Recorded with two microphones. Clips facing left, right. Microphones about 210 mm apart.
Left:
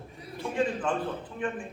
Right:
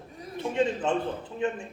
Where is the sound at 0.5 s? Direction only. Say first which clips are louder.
Right 2 dB; 25° right (ahead or behind).